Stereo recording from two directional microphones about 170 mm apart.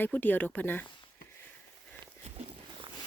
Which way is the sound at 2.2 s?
35° right (ahead or behind).